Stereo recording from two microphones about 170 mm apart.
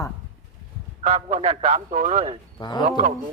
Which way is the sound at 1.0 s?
45° right (ahead or behind).